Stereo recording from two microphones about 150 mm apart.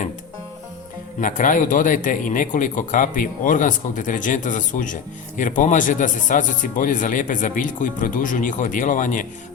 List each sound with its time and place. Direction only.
1.2 s speech: 60° left (ahead or behind)